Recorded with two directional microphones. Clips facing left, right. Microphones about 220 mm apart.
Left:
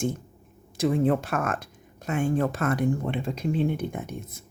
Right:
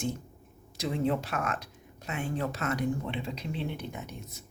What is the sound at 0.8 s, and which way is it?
Speech, 50° left (ahead or behind).